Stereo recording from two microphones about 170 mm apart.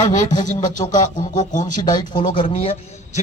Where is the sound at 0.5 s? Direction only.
50° left (ahead or behind).